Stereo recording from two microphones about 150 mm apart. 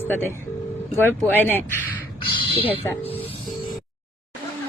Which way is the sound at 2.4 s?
40° left (ahead or behind).